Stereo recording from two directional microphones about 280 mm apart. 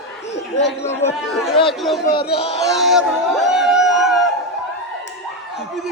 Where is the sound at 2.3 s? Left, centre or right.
Left.